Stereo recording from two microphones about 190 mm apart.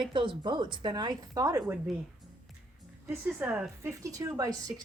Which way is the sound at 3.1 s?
5° right (ahead or behind).